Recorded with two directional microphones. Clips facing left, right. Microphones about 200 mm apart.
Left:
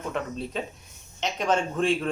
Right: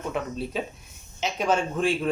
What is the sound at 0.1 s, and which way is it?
Speech, 5° right (ahead or behind).